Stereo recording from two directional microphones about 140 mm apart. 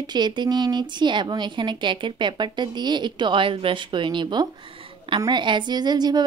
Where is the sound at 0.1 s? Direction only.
30° right (ahead or behind).